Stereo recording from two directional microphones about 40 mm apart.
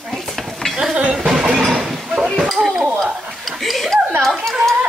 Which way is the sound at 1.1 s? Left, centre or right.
Centre.